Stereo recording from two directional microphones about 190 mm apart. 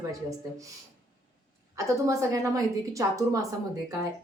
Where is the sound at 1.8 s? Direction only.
15° right (ahead or behind).